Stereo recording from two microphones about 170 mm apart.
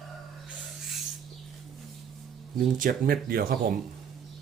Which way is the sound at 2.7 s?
55° right (ahead or behind).